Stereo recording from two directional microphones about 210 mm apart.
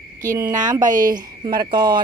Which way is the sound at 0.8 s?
40° right (ahead or behind).